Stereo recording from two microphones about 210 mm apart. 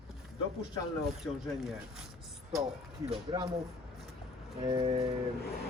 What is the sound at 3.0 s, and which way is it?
Speech, 20° right (ahead or behind).